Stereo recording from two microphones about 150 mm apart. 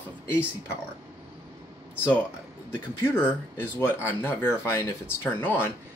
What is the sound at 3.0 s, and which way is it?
Speech, 15° left (ahead or behind).